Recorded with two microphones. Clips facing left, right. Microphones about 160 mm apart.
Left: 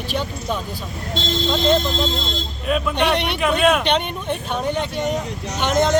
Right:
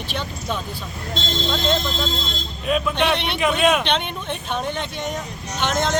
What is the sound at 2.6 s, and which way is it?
Speech, centre (ahead or behind).